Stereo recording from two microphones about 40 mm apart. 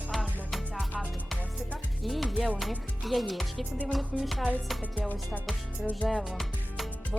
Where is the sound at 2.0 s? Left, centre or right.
Centre.